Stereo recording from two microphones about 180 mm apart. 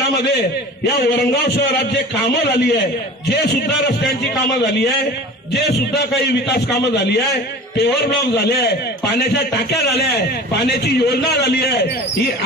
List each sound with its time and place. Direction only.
1.0 s a man's voice: 60° left (ahead or behind)
5.5 s a man's voice: 65° left (ahead or behind)
9.9 s a man's voice: 70° left (ahead or behind)